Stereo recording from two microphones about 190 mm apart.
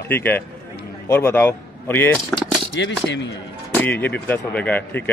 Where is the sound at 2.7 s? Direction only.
70° left (ahead or behind).